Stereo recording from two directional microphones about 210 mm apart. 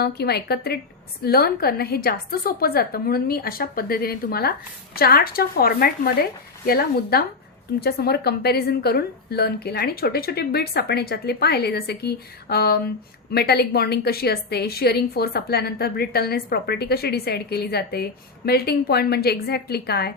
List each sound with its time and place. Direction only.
0.0 s a woman's voice: 50° left (ahead or behind)